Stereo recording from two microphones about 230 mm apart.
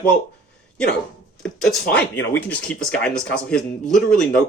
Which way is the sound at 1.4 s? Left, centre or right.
Centre.